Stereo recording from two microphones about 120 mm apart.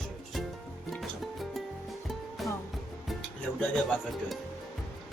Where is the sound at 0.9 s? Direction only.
Centre (ahead or behind).